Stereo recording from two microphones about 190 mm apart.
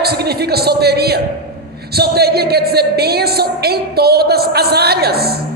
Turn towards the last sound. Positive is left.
turn(degrees=-55)  # may be behind; listen again after turning